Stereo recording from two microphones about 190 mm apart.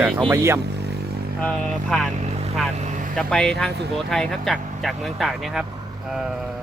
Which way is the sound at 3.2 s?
5° left (ahead or behind).